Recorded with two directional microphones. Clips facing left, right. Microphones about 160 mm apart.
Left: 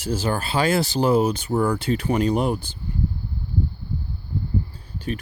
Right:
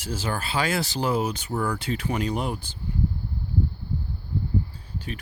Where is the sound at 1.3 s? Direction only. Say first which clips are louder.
Left 6 dB; 30° left (ahead or behind).